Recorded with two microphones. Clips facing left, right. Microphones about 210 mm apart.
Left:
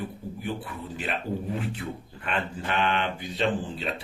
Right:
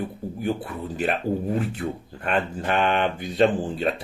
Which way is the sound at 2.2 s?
50° right (ahead or behind).